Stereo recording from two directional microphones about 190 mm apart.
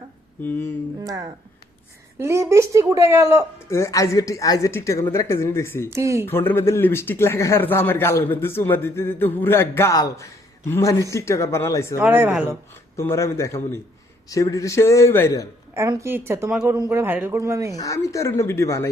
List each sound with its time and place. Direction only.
0.4 s speech: 10° left (ahead or behind)
1.0 s speech: 20° right (ahead or behind)
3.7 s speech: 15° left (ahead or behind)
5.9 s speech: 15° right (ahead or behind)
6.2 s speech: 10° left (ahead or behind)
11.9 s speech: 10° right (ahead or behind)
13.0 s speech: 15° left (ahead or behind)
15.7 s speech: 15° right (ahead or behind)
17.7 s speech: 15° left (ahead or behind)